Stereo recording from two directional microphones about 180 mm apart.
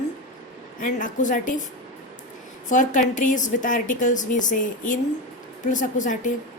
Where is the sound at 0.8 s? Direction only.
45° left (ahead or behind).